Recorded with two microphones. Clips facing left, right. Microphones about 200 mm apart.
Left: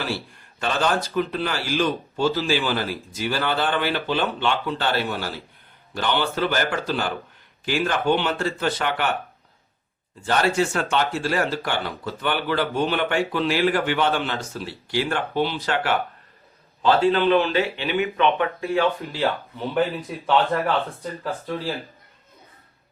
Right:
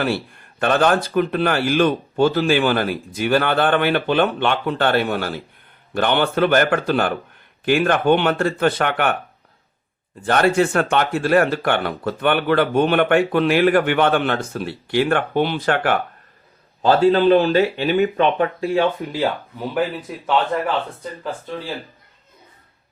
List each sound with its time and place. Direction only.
0.6 s speech: 55° right (ahead or behind)
10.2 s speech: 55° right (ahead or behind)
16.8 s speech: 40° right (ahead or behind); by 19.3 s 20° right (ahead or behind)
19.5 s a man's voice: 5° right (ahead or behind)